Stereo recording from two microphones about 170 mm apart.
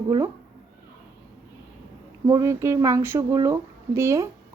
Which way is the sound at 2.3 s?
15° right (ahead or behind).